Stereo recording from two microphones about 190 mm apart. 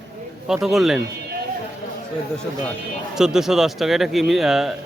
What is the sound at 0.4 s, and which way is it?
Speech, centre (ahead or behind).